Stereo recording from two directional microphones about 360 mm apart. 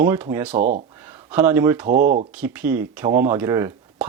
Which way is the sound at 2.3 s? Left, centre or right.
Centre.